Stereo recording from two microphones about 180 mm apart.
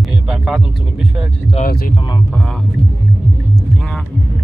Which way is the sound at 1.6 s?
55° left (ahead or behind).